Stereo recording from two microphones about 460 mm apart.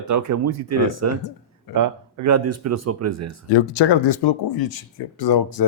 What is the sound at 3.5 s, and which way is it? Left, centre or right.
Speech, left.